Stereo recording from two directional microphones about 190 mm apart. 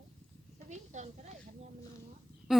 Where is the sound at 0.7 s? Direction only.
40° right (ahead or behind).